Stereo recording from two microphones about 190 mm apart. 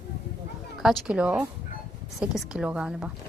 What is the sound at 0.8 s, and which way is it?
A woman's voice, 5° right (ahead or behind).